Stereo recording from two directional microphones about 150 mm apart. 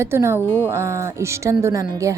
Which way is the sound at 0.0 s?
20° right (ahead or behind).